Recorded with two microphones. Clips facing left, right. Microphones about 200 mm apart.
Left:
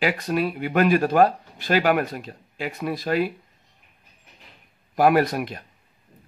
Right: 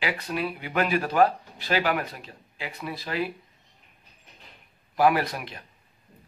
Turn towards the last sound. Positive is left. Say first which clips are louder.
# left 6 dB
turn(degrees=45)  # may be behind; listen again after turning